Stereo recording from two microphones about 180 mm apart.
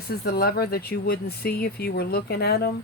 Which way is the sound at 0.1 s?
60° left (ahead or behind).